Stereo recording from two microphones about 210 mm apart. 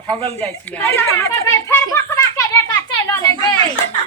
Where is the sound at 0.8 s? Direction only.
10° left (ahead or behind).